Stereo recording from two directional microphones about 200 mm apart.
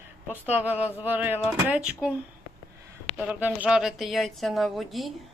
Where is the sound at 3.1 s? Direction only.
5° right (ahead or behind).